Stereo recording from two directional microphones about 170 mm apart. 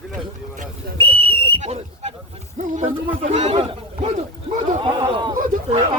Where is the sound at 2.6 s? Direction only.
45° right (ahead or behind); by 5.3 s 25° right (ahead or behind).